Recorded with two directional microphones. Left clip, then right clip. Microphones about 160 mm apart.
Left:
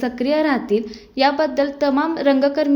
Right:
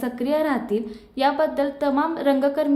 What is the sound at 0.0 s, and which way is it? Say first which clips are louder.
A woman's voice: left 4 dB; 20° left (ahead or behind).